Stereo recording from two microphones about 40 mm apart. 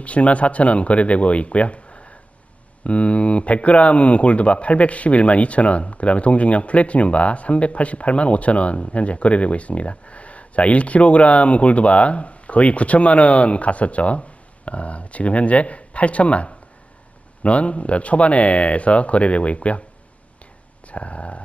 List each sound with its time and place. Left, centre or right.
0.0 s speech: left
20.8 s speech: left